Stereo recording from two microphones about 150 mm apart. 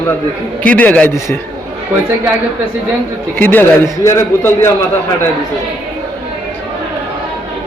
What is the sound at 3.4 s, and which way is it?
A man's voice, 15° left (ahead or behind).